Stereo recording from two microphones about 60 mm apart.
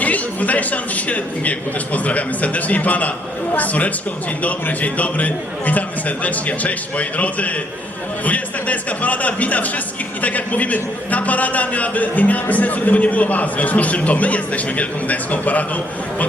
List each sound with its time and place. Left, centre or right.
0.0 s speech: left